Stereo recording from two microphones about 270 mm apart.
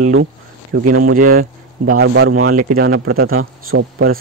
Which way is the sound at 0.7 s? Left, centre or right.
Right.